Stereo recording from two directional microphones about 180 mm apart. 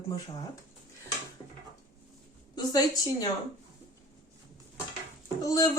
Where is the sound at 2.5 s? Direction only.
20° left (ahead or behind).